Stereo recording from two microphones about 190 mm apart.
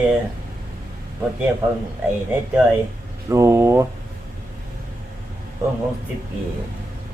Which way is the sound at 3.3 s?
15° right (ahead or behind).